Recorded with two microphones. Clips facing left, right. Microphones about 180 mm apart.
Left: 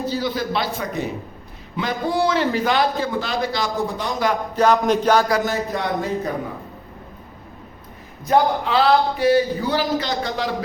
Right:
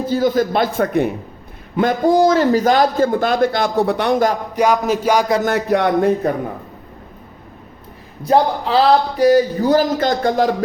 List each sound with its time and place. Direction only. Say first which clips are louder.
0.0 s a man's voice: right 7 dB; 50° right (ahead or behind); by 4.2 s 65° right (ahead or behind)
4.5 s speech: left 2 dB; 10° right (ahead or behind)
5.5 s speech: right 7 dB; 65° right (ahead or behind)
8.2 s a man's voice: right 3 dB; 35° right (ahead or behind)